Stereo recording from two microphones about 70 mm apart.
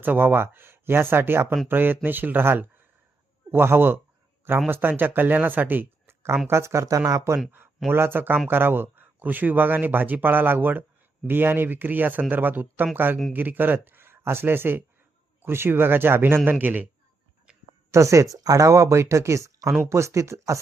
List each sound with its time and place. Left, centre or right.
0.0 s speech: right
7.9 s speech: right
17.9 s speech: right